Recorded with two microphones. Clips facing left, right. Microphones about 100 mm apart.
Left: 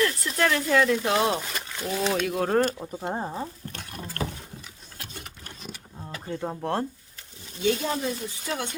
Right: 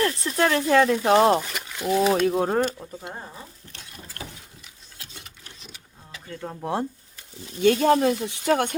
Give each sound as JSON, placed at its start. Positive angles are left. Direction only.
{"t": 0.0, "sound": "speech", "side_deg": -30}
{"t": 1.4, "sound": "speech", "side_deg": -10}
{"t": 2.3, "sound": "speech", "side_deg": -20}
{"t": 2.7, "sound": "speech", "side_deg": 20}
{"t": 3.0, "sound": "rodents", "side_deg": 35}
{"t": 4.9, "sound": "a sound", "side_deg": 50}
{"t": 6.2, "sound": "speech", "side_deg": 20}
{"t": 6.6, "sound": "speech", "side_deg": -10}
{"t": 7.6, "sound": "speech", "side_deg": -60}